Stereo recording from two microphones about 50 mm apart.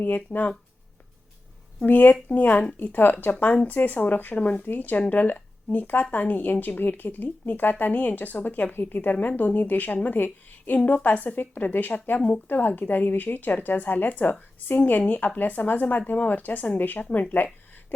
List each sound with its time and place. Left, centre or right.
0.3 s speech: left
1.8 s speech: left
3.4 s speech: left
3.7 s speech: left
4.6 s speech: left